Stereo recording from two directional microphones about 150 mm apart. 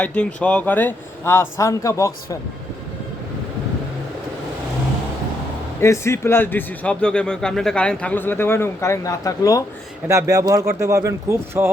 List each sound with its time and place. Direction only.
0.0 s speech: 10° left (ahead or behind)
5.8 s speech: 20° left (ahead or behind)
10.1 s speech: 20° right (ahead or behind)